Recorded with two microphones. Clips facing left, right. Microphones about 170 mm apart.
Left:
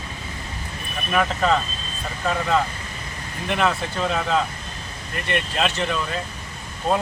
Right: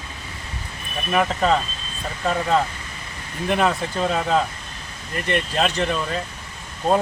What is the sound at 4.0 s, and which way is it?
Speech, 30° right (ahead or behind).